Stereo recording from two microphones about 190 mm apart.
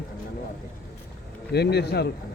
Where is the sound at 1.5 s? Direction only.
60° left (ahead or behind).